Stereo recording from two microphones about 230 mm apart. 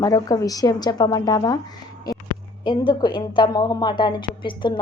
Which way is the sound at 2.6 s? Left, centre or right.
Left.